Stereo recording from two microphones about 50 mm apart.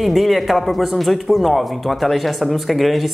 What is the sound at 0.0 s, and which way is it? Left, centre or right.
Speech, centre.